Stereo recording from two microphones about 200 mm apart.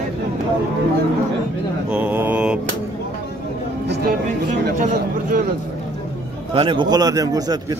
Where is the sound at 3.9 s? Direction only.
50° right (ahead or behind).